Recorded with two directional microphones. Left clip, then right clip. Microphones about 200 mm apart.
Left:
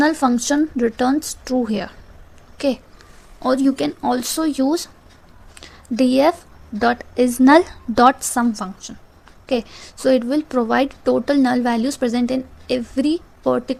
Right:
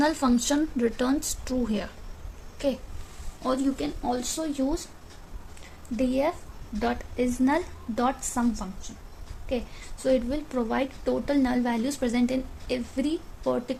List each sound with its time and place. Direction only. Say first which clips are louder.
0.0 s a woman's voice: left 7 dB; 25° left (ahead or behind)
3.4 s speech: left 9 dB; 50° left (ahead or behind)
6.0 s a woman's voice: left 11 dB; 40° left (ahead or behind)